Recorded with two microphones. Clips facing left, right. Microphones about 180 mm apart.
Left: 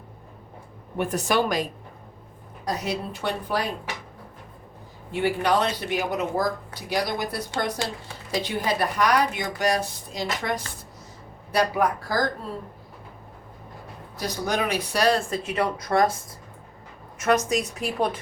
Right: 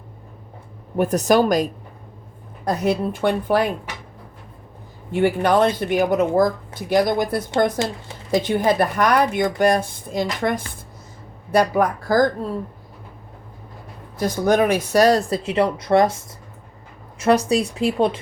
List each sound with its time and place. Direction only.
0.9 s speech: 40° right (ahead or behind)
2.6 s speech: 55° right (ahead or behind)
5.1 s speech: 50° right (ahead or behind)
11.5 s speech: 50° right (ahead or behind)
14.2 s speech: 50° right (ahead or behind); by 16.1 s 25° right (ahead or behind)
17.2 s speech: 30° right (ahead or behind)